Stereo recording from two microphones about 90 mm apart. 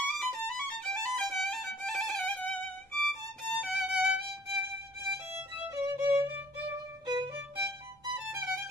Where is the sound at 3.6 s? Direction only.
10° right (ahead or behind).